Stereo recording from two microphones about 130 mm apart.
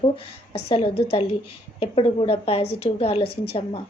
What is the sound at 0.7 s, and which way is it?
A woman's voice, 50° left (ahead or behind).